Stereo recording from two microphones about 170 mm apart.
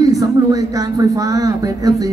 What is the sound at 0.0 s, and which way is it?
Speech, 20° right (ahead or behind).